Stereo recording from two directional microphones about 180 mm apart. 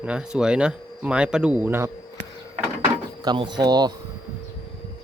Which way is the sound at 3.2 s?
25° right (ahead or behind).